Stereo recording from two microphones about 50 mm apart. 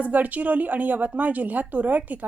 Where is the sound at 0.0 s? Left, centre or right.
Right.